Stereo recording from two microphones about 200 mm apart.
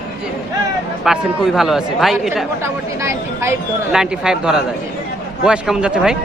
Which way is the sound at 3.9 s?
5° right (ahead or behind).